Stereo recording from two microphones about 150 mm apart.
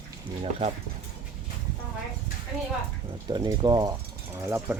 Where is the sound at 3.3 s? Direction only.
25° right (ahead or behind).